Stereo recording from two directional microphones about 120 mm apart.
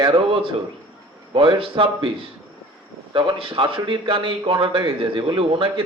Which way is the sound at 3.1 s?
45° right (ahead or behind).